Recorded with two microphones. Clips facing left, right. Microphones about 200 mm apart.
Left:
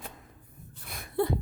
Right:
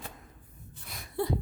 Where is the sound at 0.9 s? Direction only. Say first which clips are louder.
Left 4 dB; 55° left (ahead or behind).